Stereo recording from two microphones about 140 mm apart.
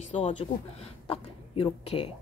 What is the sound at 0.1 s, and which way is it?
Speech, 55° left (ahead or behind).